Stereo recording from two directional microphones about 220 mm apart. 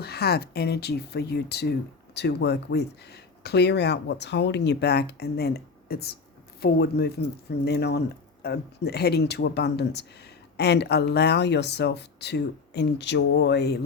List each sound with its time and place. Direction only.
0.0 s speech: 45° left (ahead or behind)